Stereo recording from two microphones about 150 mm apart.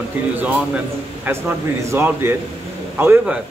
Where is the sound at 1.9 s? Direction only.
15° right (ahead or behind).